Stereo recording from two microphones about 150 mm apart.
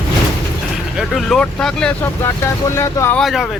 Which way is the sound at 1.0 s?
Centre (ahead or behind).